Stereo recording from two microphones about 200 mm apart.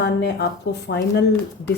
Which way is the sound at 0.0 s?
55° left (ahead or behind).